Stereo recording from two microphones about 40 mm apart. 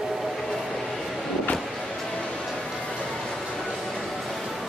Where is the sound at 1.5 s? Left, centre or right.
Centre.